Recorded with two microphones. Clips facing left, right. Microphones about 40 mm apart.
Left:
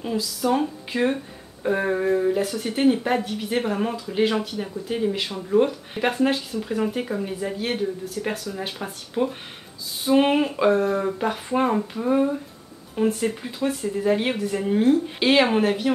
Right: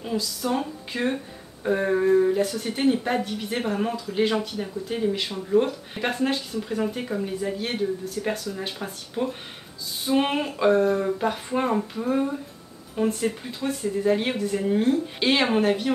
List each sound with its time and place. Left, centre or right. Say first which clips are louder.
0.0 s speech: left 3 dB; centre